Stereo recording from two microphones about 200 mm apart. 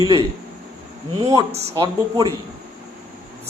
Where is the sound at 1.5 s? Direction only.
30° right (ahead or behind).